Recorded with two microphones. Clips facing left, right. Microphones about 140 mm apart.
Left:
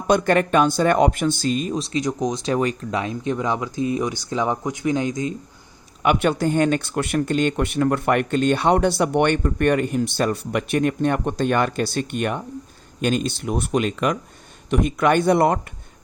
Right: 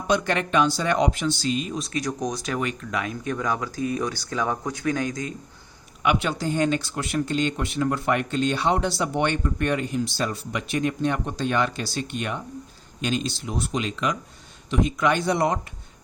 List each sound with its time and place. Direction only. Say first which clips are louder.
0.1 s speech: left 5 dB; 50° left (ahead or behind)
1.8 s speech: left 4 dB; 20° left (ahead or behind)
6.0 s speech: left 5 dB; 50° left (ahead or behind)